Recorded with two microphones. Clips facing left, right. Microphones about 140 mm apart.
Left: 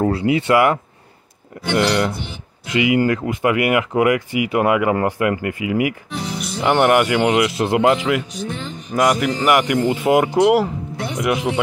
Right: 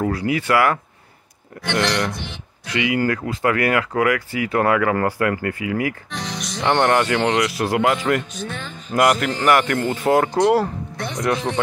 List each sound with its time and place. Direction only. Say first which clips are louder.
0.0 s speech: left 4 dB; 25° left (ahead or behind)
2.6 s speech: left 4 dB; 20° left (ahead or behind)